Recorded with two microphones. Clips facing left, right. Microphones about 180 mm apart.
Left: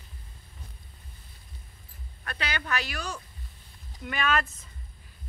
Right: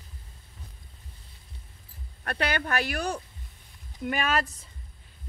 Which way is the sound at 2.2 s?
55° right (ahead or behind).